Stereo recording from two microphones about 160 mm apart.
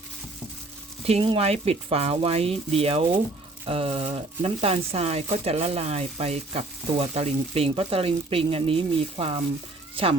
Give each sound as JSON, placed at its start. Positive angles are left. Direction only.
{"t": 1.0, "sound": "speech", "side_deg": -35}